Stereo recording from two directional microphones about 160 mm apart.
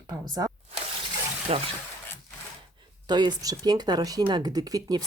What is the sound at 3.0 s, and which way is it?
Speech, 25° right (ahead or behind).